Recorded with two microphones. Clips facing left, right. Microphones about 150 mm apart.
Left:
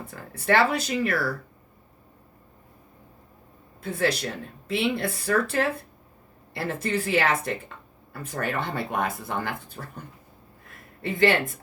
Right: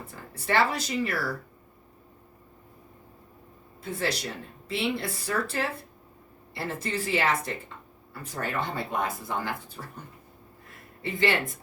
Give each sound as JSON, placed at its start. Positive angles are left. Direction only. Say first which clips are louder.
{"t": 0.3, "sound": "speech", "louder": "left 4 dB", "side_deg": 60}
{"t": 3.8, "sound": "speech", "louder": "left 5 dB", "side_deg": 55}
{"t": 11.0, "sound": "speech", "louder": "left 5 dB", "side_deg": 55}